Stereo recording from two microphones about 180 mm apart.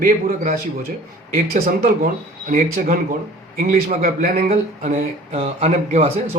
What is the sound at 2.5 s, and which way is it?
Speech, 45° right (ahead or behind).